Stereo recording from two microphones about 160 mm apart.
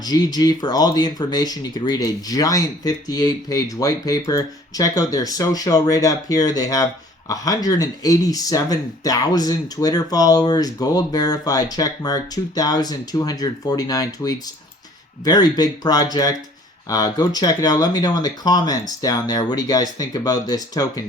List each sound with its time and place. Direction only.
0.0 s speech: 25° left (ahead or behind)